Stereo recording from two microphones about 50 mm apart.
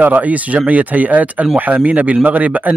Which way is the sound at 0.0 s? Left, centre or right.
Right.